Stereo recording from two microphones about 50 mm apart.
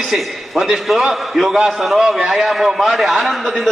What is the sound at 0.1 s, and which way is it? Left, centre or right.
A man's voice, centre.